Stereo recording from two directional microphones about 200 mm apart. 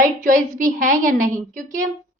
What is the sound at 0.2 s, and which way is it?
Speech, 40° right (ahead or behind).